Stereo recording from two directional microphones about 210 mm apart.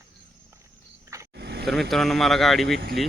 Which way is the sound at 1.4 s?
50° right (ahead or behind).